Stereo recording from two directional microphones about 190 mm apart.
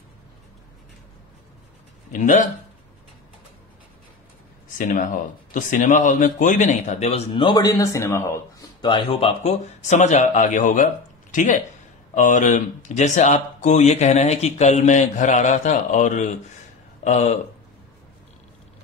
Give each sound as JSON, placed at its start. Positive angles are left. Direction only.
{"t": 2.1, "sound": "speech", "side_deg": 45}
{"t": 4.7, "sound": "speech", "side_deg": 45}